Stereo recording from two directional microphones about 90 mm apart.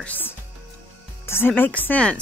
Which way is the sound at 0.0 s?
20° left (ahead or behind).